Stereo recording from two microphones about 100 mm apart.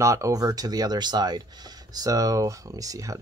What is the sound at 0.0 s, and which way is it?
Speech, 30° right (ahead or behind).